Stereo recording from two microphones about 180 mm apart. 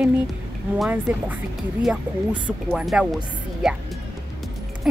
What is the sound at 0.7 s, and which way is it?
Speech, 5° right (ahead or behind).